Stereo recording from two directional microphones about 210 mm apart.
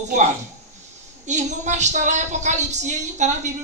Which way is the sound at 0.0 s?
35° right (ahead or behind).